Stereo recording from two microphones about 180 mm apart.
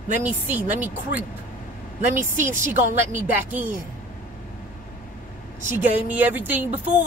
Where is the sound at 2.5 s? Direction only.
45° right (ahead or behind).